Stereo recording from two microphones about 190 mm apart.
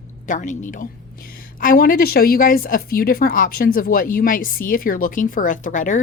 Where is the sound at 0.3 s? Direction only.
40° left (ahead or behind).